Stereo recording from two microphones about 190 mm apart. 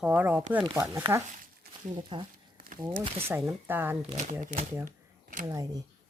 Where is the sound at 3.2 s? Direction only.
10° right (ahead or behind).